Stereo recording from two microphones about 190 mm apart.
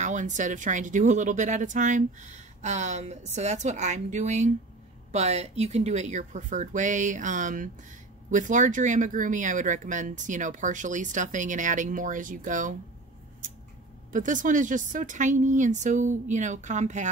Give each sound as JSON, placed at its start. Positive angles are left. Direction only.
{"t": 0.0, "sound": "speech", "side_deg": -40}
{"t": 14.1, "sound": "speech", "side_deg": -40}